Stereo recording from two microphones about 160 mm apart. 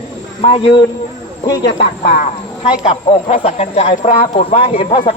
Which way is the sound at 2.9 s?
40° left (ahead or behind).